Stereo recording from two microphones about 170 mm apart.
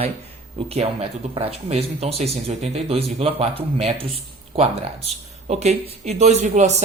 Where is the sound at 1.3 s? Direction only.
35° right (ahead or behind).